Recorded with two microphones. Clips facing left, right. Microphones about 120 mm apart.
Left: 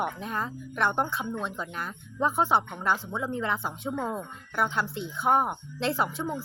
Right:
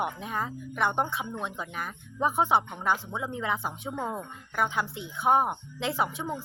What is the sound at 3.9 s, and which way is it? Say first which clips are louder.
Speech: left 3 dB; centre (ahead or behind).